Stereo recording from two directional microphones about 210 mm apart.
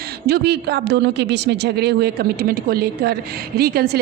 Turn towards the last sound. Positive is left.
turn(degrees=-45)  # may be behind; listen again after turning